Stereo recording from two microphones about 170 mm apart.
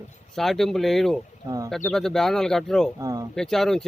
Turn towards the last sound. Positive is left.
turn(degrees=0)  # may be behind; listen again after turning